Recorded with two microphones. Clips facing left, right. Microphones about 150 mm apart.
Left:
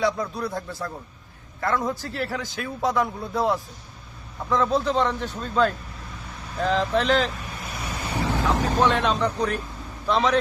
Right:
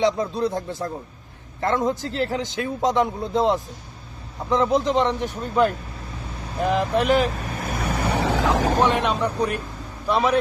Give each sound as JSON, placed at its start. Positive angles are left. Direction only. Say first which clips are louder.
{"t": 0.0, "sound": "a man's voice", "louder": "right 4 dB", "side_deg": -20}
{"t": 7.3, "sound": "vehicle", "louder": "right 7 dB", "side_deg": -50}
{"t": 8.8, "sound": "a man's voice", "louder": "right 1 dB", "side_deg": -15}